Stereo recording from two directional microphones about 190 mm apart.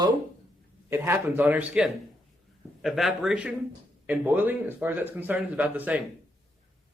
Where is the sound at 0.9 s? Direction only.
10° right (ahead or behind).